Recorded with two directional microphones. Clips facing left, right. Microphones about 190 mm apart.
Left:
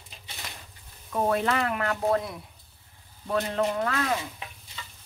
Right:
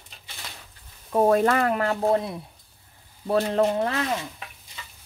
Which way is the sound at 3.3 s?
35° right (ahead or behind).